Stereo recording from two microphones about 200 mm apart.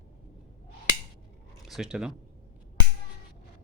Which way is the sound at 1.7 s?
Centre (ahead or behind).